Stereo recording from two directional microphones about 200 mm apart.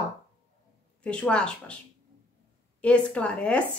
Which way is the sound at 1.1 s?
5° left (ahead or behind).